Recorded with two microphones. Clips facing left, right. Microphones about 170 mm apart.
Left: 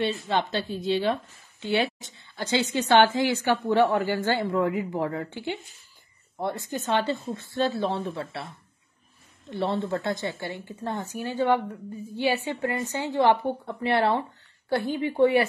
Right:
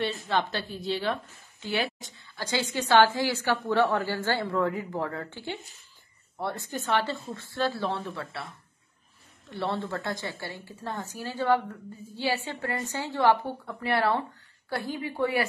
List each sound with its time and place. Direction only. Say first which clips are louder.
0.0 s a woman's voice: left 2 dB; 20° left (ahead or behind)
9.5 s a woman's voice: left 4 dB; 15° left (ahead or behind)